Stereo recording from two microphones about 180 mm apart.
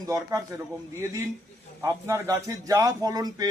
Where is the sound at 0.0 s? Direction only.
20° right (ahead or behind).